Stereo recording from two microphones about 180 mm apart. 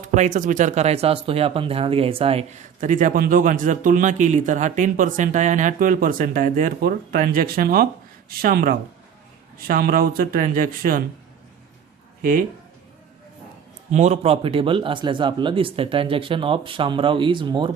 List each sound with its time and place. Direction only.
0.0 s speech: 45° right (ahead or behind)
12.2 s speech: 50° right (ahead or behind)
13.9 s speech: 40° right (ahead or behind)